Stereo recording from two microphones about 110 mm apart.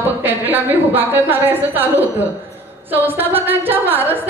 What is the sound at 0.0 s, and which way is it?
A woman's voice, 20° right (ahead or behind).